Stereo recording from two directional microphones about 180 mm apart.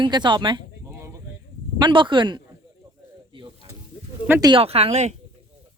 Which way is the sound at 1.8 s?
25° right (ahead or behind).